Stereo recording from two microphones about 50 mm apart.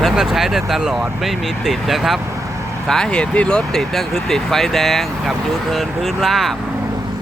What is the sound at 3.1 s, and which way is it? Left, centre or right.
Speech, left.